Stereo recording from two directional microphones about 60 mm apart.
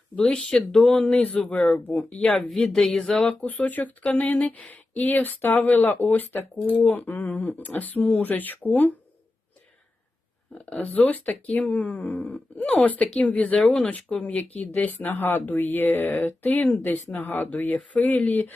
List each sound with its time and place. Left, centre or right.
0.2 s speech: centre; by 2.2 s left
2.2 s speech: centre
2.5 s a sound: centre
3.4 s speech: left
10.8 s speech: left